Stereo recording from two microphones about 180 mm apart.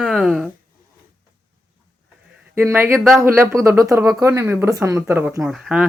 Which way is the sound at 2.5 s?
15° right (ahead or behind).